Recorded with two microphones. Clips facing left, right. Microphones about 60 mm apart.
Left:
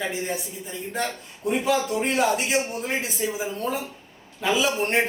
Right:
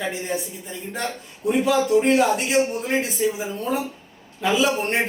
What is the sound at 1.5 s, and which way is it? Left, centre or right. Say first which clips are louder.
Speech: right 4 dB; centre.